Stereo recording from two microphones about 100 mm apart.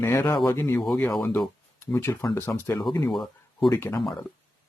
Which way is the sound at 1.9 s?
25° left (ahead or behind).